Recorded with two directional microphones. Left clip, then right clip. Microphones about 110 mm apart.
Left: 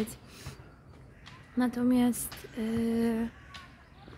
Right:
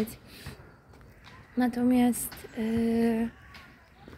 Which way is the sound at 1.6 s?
40° left (ahead or behind).